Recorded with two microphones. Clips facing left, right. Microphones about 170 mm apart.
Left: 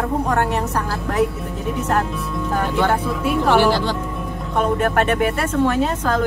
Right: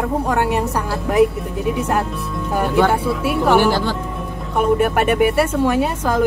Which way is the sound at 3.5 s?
50° right (ahead or behind).